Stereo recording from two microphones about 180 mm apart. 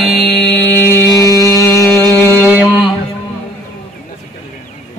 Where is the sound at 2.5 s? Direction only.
5° right (ahead or behind).